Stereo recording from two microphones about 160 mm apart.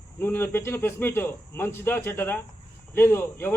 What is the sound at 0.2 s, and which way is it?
A man's voice, 15° left (ahead or behind).